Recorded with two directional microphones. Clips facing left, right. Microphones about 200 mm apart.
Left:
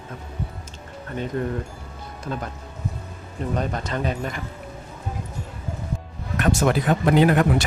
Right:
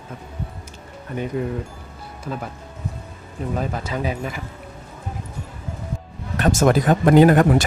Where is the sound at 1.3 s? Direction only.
10° right (ahead or behind).